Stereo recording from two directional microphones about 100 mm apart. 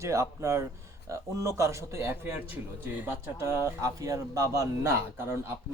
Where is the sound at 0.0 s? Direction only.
30° right (ahead or behind).